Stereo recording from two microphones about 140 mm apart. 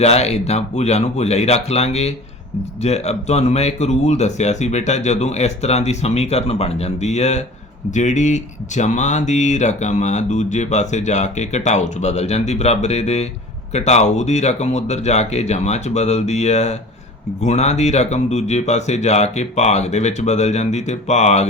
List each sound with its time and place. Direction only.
0.0 s speech: 50° left (ahead or behind)